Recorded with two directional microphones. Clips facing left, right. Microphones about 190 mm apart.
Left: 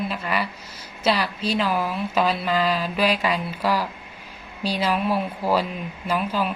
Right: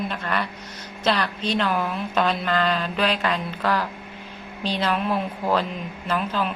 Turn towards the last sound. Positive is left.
turn(degrees=10)  # may be behind; listen again after turning